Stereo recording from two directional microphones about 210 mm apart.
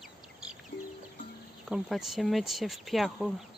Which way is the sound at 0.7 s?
50° left (ahead or behind).